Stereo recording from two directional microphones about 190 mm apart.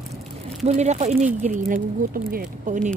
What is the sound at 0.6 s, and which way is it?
Speech, 35° right (ahead or behind).